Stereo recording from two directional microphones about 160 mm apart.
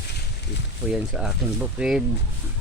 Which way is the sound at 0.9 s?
5° right (ahead or behind).